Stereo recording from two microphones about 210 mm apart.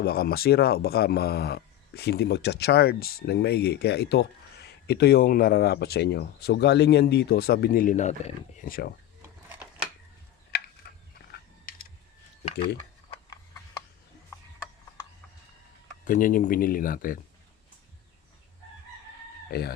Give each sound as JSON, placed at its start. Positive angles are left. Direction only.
{"t": 0.0, "sound": "speech", "side_deg": 50}
{"t": 9.2, "sound": "a sound", "side_deg": -10}
{"t": 10.8, "sound": "a sound", "side_deg": 50}
{"t": 11.3, "sound": "mechanisms", "side_deg": 45}
{"t": 16.0, "sound": "speech", "side_deg": 40}
{"t": 19.5, "sound": "speech", "side_deg": 50}